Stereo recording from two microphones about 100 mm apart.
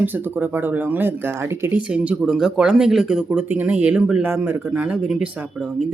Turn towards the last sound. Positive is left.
turn(degrees=-15)  # may be behind; listen again after turning